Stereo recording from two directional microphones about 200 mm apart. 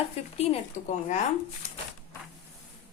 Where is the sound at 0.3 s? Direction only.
35° left (ahead or behind).